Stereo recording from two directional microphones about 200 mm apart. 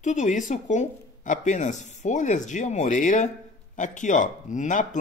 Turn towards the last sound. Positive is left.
turn(degrees=40)  # may be behind; listen again after turning